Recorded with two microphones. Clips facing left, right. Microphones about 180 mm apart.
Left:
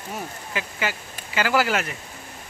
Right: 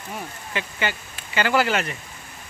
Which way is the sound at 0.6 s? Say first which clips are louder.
Right 1 dB; 5° left (ahead or behind).